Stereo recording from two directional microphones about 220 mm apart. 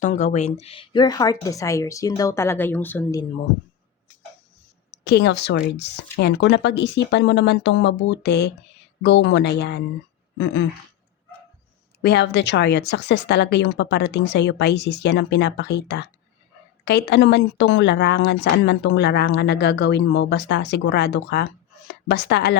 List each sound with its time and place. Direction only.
0.0 s a woman's voice: 35° left (ahead or behind); by 3.2 s 10° left (ahead or behind)
5.0 s speech: 50° left (ahead or behind)
10.3 s a sound: 55° left (ahead or behind)
12.0 s speech: 50° left (ahead or behind)